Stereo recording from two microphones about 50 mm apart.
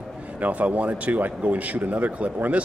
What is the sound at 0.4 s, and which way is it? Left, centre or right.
Speech, right.